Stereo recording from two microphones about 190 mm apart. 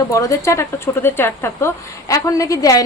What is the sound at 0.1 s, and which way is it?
Speech, 15° left (ahead or behind).